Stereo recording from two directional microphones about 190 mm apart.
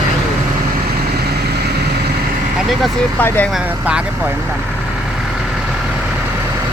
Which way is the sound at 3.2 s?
10° left (ahead or behind).